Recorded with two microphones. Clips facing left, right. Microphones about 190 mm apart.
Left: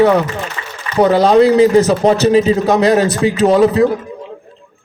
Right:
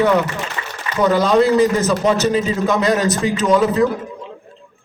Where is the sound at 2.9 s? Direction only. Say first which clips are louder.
Left 4 dB; 50° left (ahead or behind).